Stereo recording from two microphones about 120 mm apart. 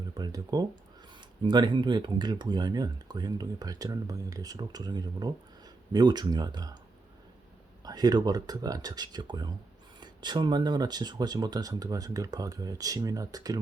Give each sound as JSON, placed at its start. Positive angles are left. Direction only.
{"t": 0.0, "sound": "speech", "side_deg": -30}
{"t": 7.9, "sound": "speech", "side_deg": -35}